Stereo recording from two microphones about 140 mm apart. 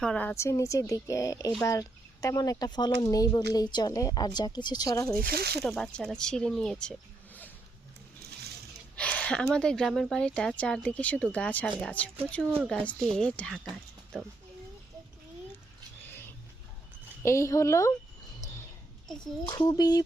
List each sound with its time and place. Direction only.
0.0 s speech: 10° left (ahead or behind); by 5.0 s 25° left (ahead or behind)
5.6 s speech: centre (ahead or behind)
9.0 s speech: 10° left (ahead or behind)
17.2 s speech: 20° left (ahead or behind)
18.3 s a sound: 20° left (ahead or behind)
19.5 s speech: 30° left (ahead or behind)